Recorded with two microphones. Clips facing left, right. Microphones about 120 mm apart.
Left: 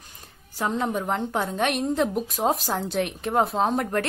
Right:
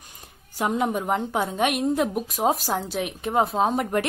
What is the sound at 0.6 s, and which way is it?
A woman's voice, 10° right (ahead or behind).